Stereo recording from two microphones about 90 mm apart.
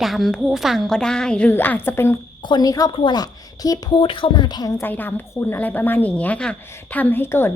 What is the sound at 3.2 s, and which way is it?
Speech, 45° left (ahead or behind).